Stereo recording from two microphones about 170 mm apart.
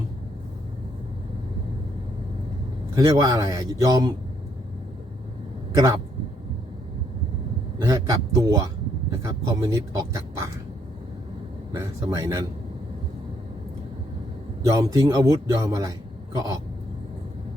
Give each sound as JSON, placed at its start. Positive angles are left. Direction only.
{"t": 2.9, "sound": "speech", "side_deg": -20}
{"t": 5.7, "sound": "a man's voice", "side_deg": -20}
{"t": 7.8, "sound": "speech", "side_deg": -20}
{"t": 11.7, "sound": "speech", "side_deg": -20}
{"t": 14.6, "sound": "speech", "side_deg": -20}